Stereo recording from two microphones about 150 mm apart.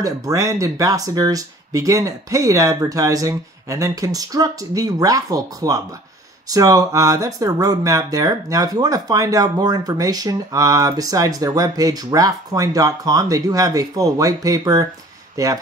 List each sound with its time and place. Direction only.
0.0 s speech: 20° right (ahead or behind)